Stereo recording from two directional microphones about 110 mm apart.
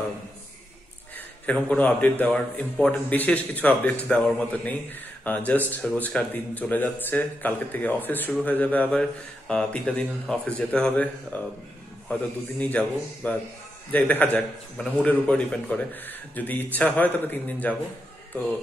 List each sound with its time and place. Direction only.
1.1 s a man's voice: 15° left (ahead or behind)